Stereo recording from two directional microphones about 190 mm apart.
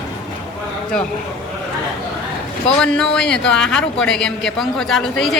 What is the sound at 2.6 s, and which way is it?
Speech, 5° left (ahead or behind).